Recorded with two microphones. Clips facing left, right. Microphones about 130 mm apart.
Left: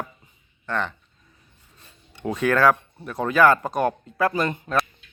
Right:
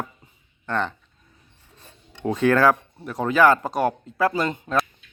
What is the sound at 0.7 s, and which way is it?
Speech, 35° right (ahead or behind).